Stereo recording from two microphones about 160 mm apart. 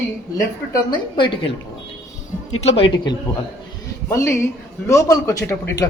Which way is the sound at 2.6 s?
40° left (ahead or behind).